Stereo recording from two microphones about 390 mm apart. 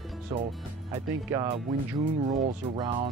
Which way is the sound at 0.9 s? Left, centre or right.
Centre.